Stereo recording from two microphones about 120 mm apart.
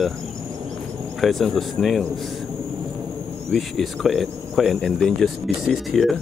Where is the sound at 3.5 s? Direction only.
Centre (ahead or behind).